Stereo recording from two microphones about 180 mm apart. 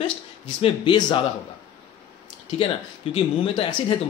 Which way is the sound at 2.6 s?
30° left (ahead or behind).